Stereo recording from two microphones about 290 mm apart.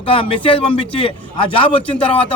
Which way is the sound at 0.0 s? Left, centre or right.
Centre.